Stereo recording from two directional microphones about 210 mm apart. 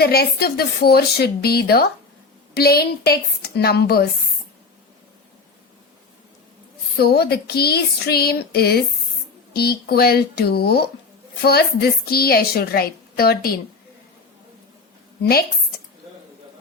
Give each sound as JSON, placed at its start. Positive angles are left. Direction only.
{"t": 0.0, "sound": "a woman's voice", "side_deg": 50}
{"t": 6.9, "sound": "a woman's voice", "side_deg": 50}
{"t": 15.2, "sound": "a woman's voice", "side_deg": 45}